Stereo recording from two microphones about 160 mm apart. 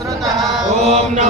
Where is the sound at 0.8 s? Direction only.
40° right (ahead or behind).